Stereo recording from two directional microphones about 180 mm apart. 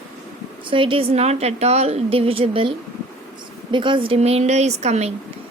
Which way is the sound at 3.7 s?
25° right (ahead or behind).